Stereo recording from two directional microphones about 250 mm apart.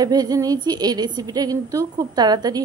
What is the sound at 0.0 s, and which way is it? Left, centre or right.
A woman's voice, centre.